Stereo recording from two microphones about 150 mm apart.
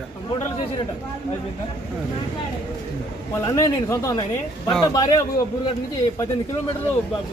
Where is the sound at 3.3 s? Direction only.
20° left (ahead or behind).